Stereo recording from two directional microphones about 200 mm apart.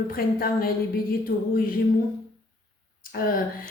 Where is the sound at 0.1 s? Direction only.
45° left (ahead or behind).